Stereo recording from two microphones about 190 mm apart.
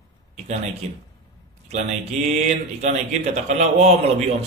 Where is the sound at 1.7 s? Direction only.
35° right (ahead or behind).